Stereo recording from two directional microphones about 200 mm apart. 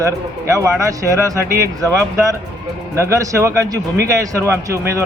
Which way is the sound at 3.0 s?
15° right (ahead or behind).